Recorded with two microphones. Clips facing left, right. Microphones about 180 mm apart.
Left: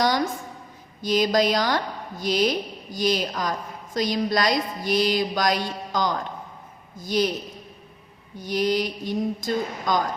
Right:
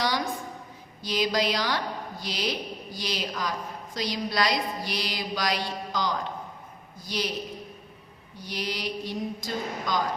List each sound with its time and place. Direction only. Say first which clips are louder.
1.0 s a woman's voice: left 6 dB; 45° left (ahead or behind)
8.4 s a woman's voice: left 10 dB; 45° left (ahead or behind)